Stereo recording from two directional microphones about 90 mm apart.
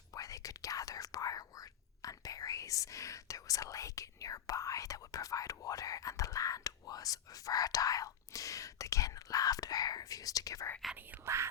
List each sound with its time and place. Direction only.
0.1 s speech: 40° left (ahead or behind)